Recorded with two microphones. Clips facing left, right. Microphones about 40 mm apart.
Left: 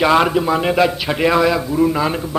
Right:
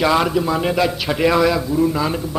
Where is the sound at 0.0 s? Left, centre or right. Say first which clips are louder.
Left 3 dB; left.